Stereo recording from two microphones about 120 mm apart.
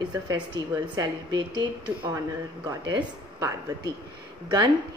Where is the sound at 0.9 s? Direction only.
35° right (ahead or behind).